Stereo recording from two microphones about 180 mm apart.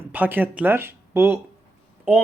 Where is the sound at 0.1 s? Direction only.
10° right (ahead or behind).